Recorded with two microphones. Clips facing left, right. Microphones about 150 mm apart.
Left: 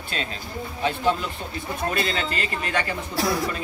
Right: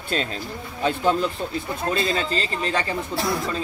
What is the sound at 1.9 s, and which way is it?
Speech, 25° right (ahead or behind).